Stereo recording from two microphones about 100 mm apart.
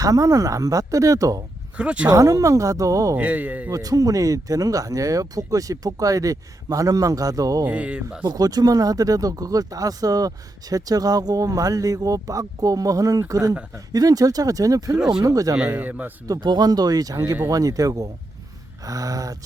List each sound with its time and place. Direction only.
0.0 s speech: 35° right (ahead or behind)
1.8 s speech: 10° right (ahead or behind)
2.0 s speech: 35° right (ahead or behind)
3.2 s speech: 15° right (ahead or behind)
3.7 s speech: 35° right (ahead or behind)
7.6 s speech: 15° right (ahead or behind)
8.2 s speech: 40° right (ahead or behind)
14.9 s speech: 5° right (ahead or behind)
15.2 s speech: 35° right (ahead or behind)
15.5 s speech: 15° right (ahead or behind)
16.2 s speech: 40° right (ahead or behind)